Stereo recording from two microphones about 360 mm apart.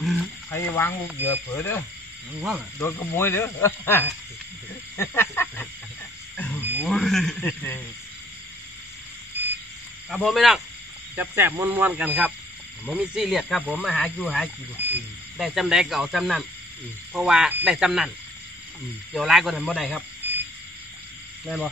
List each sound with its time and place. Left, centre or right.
0.0 s speech: centre
4.9 s snake: centre
6.3 s speech: centre
10.0 s speech: centre
19.1 s speech: centre